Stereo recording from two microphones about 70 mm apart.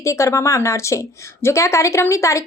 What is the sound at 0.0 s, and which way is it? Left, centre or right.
A woman's voice, left.